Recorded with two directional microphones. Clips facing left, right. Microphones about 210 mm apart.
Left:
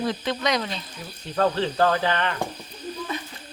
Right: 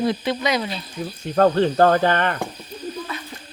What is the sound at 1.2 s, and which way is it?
Speech, 50° right (ahead or behind).